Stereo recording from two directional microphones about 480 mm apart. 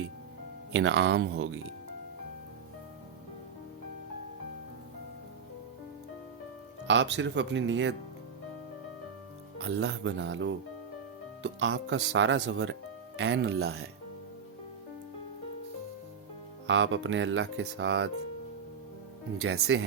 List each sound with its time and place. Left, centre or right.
0.7 s speech: right
6.8 s speech: right
9.6 s speech: right
16.6 s speech: right
19.4 s speech: right